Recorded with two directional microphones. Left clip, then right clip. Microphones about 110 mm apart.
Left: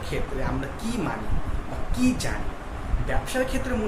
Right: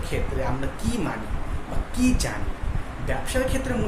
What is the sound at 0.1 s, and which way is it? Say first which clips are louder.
Speech: right 2 dB; 15° right (ahead or behind).